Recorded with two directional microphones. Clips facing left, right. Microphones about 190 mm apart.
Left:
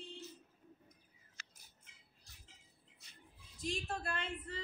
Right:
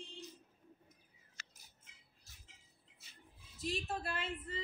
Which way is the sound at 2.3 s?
Centre (ahead or behind).